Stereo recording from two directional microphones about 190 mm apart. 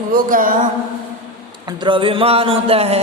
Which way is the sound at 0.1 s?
45° right (ahead or behind).